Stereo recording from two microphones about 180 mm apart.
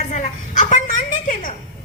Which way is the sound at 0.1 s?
45° left (ahead or behind).